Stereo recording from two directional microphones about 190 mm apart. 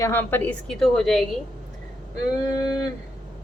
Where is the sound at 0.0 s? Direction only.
10° left (ahead or behind).